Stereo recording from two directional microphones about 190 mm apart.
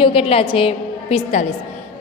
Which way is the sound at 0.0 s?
30° left (ahead or behind).